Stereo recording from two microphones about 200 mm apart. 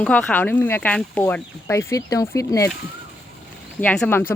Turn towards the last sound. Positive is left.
turn(degrees=10)  # may be behind; listen again after turning